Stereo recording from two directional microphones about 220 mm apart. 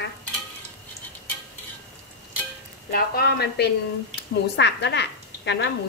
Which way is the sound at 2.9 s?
45° left (ahead or behind).